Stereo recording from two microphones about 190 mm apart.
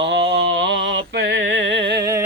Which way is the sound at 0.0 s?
65° right (ahead or behind).